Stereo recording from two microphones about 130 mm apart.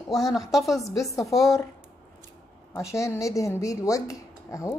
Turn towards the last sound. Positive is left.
turn(degrees=25)  # may be behind; listen again after turning